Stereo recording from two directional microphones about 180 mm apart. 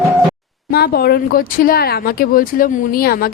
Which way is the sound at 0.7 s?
60° left (ahead or behind).